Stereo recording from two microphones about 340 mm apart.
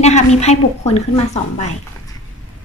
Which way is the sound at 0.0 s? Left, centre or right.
Centre.